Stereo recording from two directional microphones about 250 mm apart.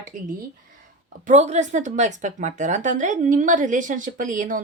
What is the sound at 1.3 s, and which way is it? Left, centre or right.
A woman's voice, right.